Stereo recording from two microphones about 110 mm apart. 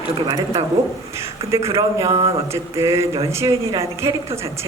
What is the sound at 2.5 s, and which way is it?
Speech, 25° right (ahead or behind).